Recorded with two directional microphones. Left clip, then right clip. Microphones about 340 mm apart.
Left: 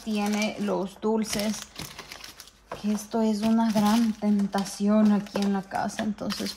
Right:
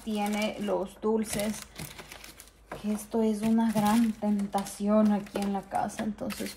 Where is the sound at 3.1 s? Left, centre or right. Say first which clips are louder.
Left 2 dB; left.